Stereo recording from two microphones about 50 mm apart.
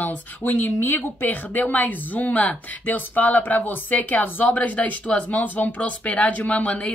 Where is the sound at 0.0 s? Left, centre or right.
Left.